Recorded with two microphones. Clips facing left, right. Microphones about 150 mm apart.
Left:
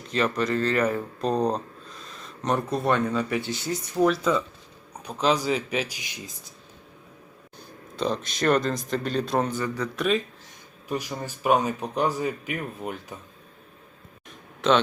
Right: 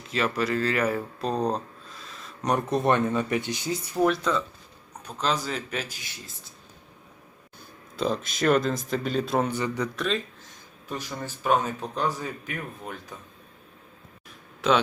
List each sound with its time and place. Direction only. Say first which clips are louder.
0.1 s speech: left 1 dB; 5° right (ahead or behind)
1.4 s a sound: left 2 dB; 5° right (ahead or behind)
2.4 s a man's voice: right 1 dB; 15° right (ahead or behind); by 6.3 s 15° left (ahead or behind)
7.9 s speech: even; 5° right (ahead or behind)
9.5 s speech: even; 20° right (ahead or behind)
9.9 s speech: left 4 dB; 5° left (ahead or behind)
14.6 s speech: left 2 dB; 10° right (ahead or behind)